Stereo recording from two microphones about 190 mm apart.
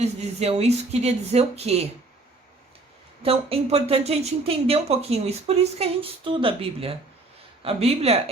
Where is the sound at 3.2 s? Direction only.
30° right (ahead or behind).